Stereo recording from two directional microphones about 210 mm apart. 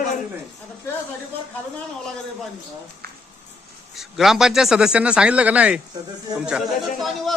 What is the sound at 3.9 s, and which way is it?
Speech, centre (ahead or behind).